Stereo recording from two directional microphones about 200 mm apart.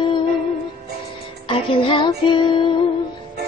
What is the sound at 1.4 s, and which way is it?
Music, 25° left (ahead or behind).